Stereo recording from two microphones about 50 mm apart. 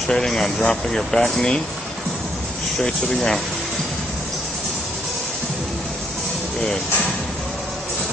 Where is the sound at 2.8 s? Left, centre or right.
Centre.